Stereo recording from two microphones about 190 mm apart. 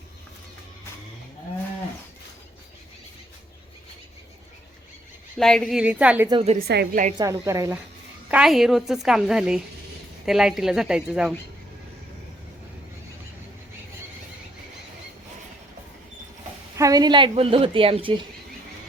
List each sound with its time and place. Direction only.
5.4 s a woman's voice: centre (ahead or behind)
6.2 s a woman's voice: 30° right (ahead or behind)
6.7 s a woman's voice: 60° right (ahead or behind)
7.2 s speech: 15° right (ahead or behind)
8.3 s a woman's voice: 5° right (ahead or behind)
16.7 s a woman's voice: 20° right (ahead or behind)